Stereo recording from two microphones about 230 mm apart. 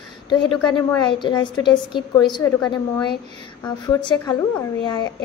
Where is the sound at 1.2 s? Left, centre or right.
Centre.